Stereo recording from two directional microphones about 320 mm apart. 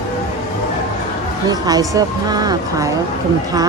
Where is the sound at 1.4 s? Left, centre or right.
Centre.